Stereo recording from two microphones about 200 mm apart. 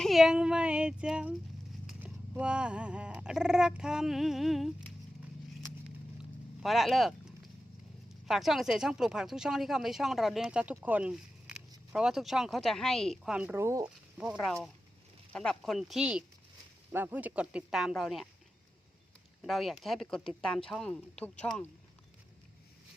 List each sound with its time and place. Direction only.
0.0 s a woman's voice: centre (ahead or behind)
6.6 s a woman's voice: centre (ahead or behind)
14.3 s a woman's voice: 5° left (ahead or behind)
19.4 s a woman's voice: centre (ahead or behind)